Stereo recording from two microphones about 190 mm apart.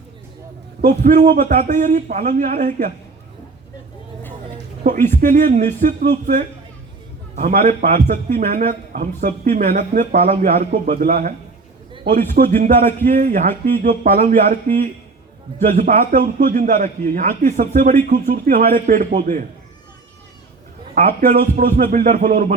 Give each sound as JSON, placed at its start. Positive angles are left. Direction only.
{"t": 0.9, "sound": "speech", "side_deg": -40}
{"t": 5.0, "sound": "a man's voice", "side_deg": -40}
{"t": 15.7, "sound": "a man's voice", "side_deg": -40}
{"t": 20.9, "sound": "a man's voice", "side_deg": -45}